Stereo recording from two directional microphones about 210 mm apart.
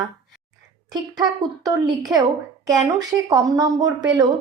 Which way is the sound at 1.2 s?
20° right (ahead or behind).